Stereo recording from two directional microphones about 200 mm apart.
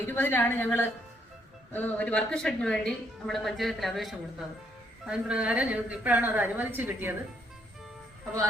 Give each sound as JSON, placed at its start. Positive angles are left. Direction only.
{"t": 0.1, "sound": "a woman's voice", "side_deg": 10}